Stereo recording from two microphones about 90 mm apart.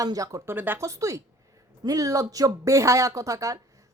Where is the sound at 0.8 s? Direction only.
35° right (ahead or behind).